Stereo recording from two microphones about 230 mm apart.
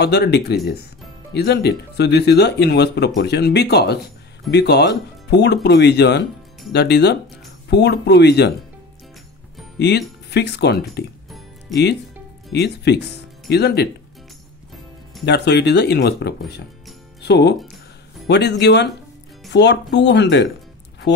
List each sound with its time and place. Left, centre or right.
0.0 s speech: left
9.8 s speech: left
12.5 s speech: left
15.2 s speech: left